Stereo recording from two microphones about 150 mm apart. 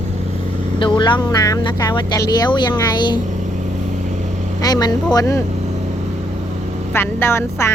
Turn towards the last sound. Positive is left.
turn(degrees=15)  # may be behind; listen again after turning